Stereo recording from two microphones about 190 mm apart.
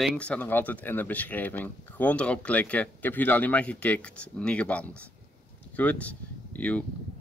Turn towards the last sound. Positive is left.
turn(degrees=5)  # may be behind; listen again after turning